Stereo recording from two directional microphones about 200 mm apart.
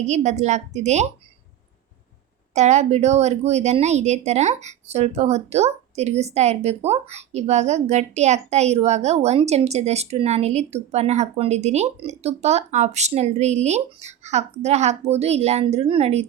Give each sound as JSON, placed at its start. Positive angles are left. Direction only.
{"t": 0.0, "sound": "a woman's voice", "side_deg": -35}
{"t": 2.6, "sound": "a woman's voice", "side_deg": -35}